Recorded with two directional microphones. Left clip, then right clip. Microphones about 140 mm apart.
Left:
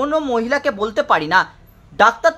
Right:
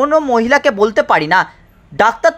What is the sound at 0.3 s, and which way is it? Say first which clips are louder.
Speech: right 6 dB; 30° right (ahead or behind).